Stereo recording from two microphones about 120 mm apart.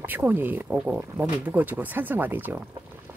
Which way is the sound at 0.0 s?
15° right (ahead or behind).